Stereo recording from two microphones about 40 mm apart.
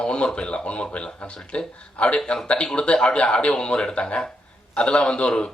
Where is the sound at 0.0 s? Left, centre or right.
Left.